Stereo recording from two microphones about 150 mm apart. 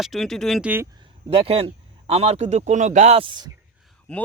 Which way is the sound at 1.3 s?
40° right (ahead or behind).